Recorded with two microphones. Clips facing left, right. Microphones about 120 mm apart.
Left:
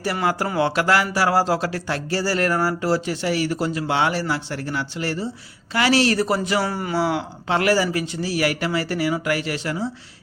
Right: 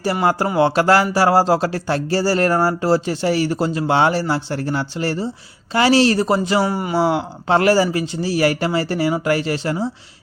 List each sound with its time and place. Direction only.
0.0 s a man's voice: 30° right (ahead or behind)